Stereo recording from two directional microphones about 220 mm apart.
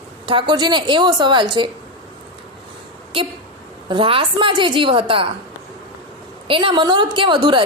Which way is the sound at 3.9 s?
25° right (ahead or behind).